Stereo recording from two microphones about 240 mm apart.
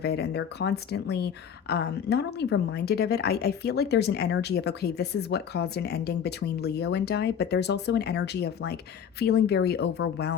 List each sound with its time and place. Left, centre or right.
0.0 s speech: left